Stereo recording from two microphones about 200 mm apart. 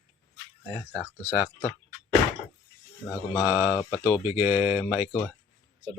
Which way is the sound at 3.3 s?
10° right (ahead or behind).